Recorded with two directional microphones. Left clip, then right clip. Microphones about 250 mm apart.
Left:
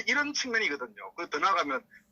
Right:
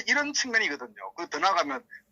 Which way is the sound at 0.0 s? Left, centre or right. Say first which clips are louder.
Right 2 dB; centre.